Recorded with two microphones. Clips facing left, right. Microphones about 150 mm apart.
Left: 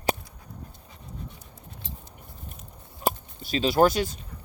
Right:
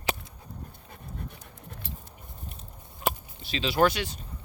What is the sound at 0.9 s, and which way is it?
Dog, 60° right (ahead or behind).